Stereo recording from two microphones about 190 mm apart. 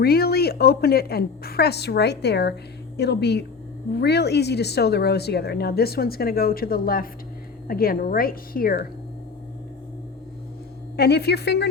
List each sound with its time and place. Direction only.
0.0 s a woman's voice: 55° left (ahead or behind)
10.9 s a woman's voice: 60° left (ahead or behind)